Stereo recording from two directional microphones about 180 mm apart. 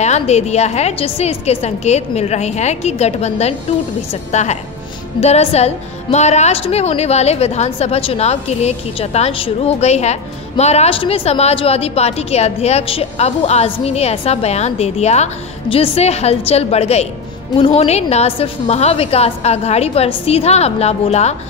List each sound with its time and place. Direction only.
0.0 s a woman's voice: 40° left (ahead or behind)